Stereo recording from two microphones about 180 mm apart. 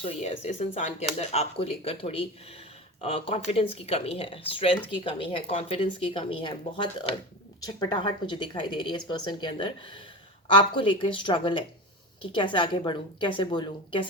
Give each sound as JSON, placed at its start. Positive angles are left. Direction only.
{"t": 0.0, "sound": "speech", "side_deg": 35}